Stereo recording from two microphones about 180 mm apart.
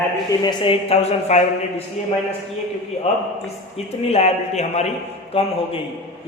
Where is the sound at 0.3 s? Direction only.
25° left (ahead or behind).